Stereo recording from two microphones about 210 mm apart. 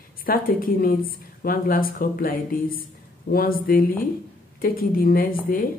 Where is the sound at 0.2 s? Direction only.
45° left (ahead or behind).